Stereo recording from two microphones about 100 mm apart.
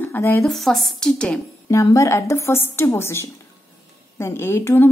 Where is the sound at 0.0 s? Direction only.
20° left (ahead or behind).